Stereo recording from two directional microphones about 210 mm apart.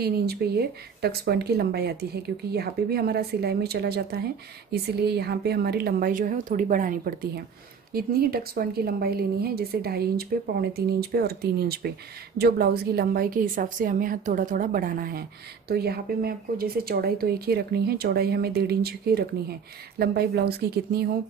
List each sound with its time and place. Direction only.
0.0 s a woman's voice: 50° right (ahead or behind)